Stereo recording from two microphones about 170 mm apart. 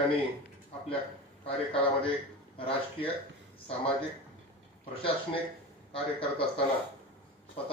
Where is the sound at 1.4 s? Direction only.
35° left (ahead or behind).